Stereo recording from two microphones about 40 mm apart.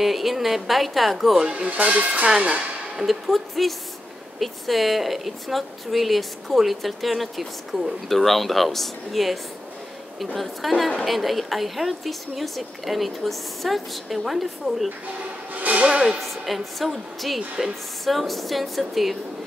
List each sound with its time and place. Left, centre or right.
0.0 s a woman's voice: centre
1.5 s speech: right
2.2 s speech: centre
3.0 s a woman's voice: centre
15.5 s music: right
15.8 s speech: centre
16.2 s a woman's voice: centre
17.6 s speech: centre
18.0 s a woman's voice: centre